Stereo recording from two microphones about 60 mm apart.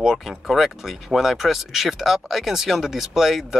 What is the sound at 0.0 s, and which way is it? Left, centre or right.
Speech, centre.